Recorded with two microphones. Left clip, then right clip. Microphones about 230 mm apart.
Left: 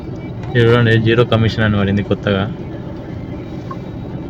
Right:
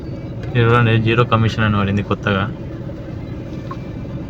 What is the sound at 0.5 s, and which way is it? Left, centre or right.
Speech, centre.